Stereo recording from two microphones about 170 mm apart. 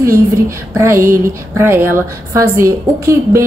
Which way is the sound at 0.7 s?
15° right (ahead or behind).